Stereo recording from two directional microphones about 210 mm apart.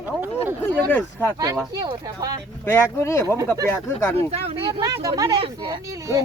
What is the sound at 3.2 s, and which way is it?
Speech, 15° right (ahead or behind).